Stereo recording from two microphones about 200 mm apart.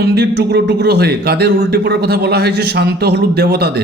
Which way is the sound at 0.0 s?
55° right (ahead or behind).